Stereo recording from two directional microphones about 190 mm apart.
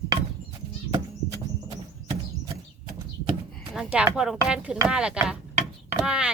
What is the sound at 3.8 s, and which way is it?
Speech, 5° right (ahead or behind).